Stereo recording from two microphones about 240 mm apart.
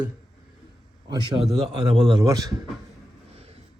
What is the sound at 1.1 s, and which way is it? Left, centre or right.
A man's voice, centre.